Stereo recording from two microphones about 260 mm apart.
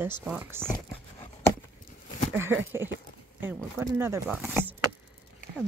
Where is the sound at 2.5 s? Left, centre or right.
Centre.